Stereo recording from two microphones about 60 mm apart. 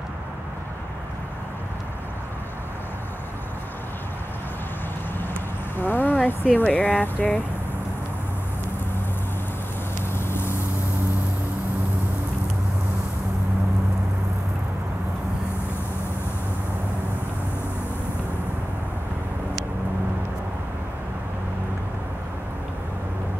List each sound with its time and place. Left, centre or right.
5.8 s a sound: left
6.7 s speech: left
10.1 s vehicle: left